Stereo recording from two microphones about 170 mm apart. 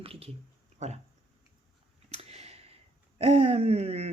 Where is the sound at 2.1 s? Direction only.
35° right (ahead or behind).